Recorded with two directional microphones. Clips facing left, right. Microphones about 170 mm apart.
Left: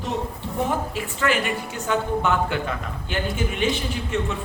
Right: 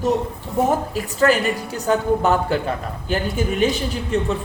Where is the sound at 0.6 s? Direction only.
40° right (ahead or behind).